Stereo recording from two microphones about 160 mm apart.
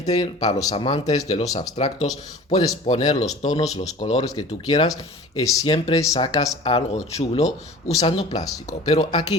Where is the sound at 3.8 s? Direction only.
30° left (ahead or behind).